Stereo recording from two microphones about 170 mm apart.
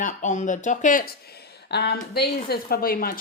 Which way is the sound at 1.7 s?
70° left (ahead or behind).